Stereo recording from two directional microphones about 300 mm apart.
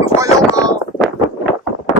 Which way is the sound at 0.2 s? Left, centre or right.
Centre.